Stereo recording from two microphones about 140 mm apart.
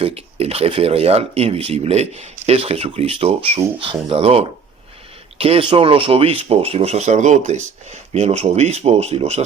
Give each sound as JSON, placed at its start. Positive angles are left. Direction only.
{"t": 0.0, "sound": "speech", "side_deg": -45}